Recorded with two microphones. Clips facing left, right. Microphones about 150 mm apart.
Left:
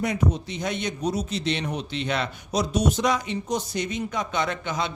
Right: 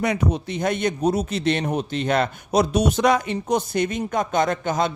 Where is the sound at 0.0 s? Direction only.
70° right (ahead or behind).